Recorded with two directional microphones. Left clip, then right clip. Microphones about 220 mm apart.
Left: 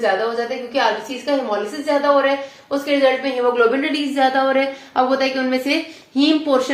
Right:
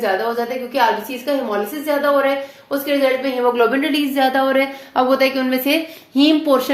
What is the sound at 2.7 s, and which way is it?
A woman's voice, 40° right (ahead or behind).